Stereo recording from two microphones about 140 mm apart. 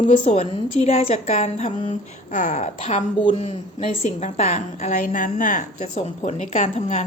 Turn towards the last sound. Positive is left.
turn(degrees=50)  # may be behind; listen again after turning